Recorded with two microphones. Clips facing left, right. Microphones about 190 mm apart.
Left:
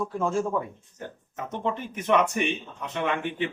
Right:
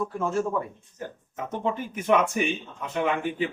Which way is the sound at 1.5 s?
5° right (ahead or behind).